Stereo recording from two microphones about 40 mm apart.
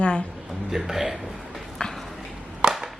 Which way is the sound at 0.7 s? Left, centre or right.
Centre.